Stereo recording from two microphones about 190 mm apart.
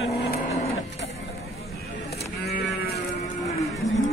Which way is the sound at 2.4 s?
55° left (ahead or behind).